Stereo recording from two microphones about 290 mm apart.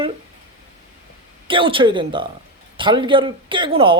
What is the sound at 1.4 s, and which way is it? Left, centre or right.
Speech, centre.